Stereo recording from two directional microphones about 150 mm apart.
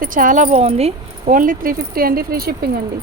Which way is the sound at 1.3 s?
65° right (ahead or behind).